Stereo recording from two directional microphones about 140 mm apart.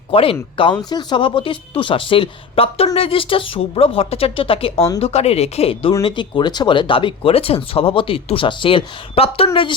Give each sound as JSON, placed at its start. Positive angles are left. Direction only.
{"t": 0.1, "sound": "speech", "side_deg": 40}